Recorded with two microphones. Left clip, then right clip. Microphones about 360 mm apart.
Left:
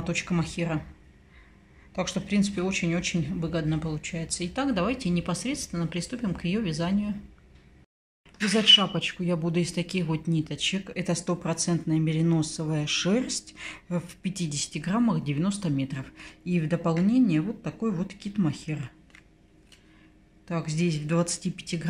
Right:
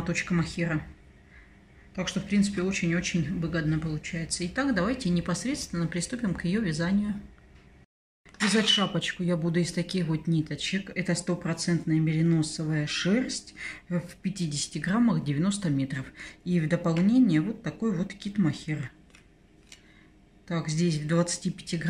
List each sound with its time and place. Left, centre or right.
0.0 s speech: centre
2.0 s speech: centre
8.5 s speech: centre
20.4 s speech: centre